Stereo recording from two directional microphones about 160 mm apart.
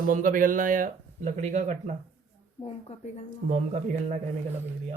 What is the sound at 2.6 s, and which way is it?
Speech, 40° left (ahead or behind).